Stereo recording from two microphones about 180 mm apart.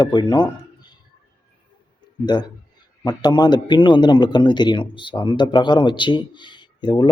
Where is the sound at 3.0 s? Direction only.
20° left (ahead or behind).